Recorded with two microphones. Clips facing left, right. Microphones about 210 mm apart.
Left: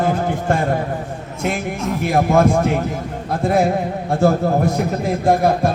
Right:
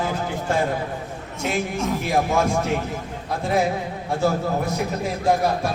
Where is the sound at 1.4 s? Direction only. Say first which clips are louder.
Left 2 dB; centre (ahead or behind).